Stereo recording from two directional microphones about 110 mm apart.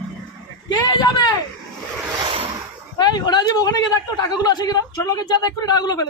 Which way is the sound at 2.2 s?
55° right (ahead or behind).